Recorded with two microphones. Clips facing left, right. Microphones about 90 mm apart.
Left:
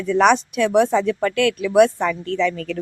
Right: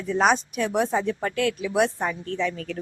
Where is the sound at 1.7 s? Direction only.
60° left (ahead or behind); by 2.5 s 90° left.